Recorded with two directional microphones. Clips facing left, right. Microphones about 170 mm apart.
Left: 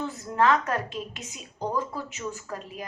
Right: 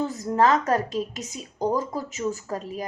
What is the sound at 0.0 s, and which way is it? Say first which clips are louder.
Speech: right 3 dB; 40° right (ahead or behind).